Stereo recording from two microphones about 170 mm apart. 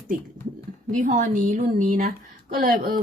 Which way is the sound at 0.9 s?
45° right (ahead or behind).